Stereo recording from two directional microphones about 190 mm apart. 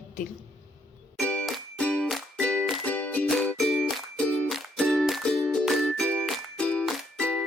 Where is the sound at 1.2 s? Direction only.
5° left (ahead or behind).